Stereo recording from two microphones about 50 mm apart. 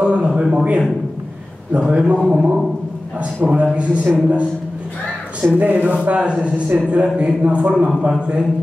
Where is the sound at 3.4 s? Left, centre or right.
Right.